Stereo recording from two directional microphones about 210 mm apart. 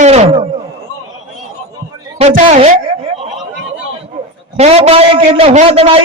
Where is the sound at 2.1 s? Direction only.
30° right (ahead or behind).